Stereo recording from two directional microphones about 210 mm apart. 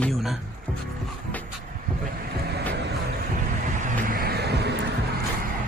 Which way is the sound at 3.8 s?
40° right (ahead or behind).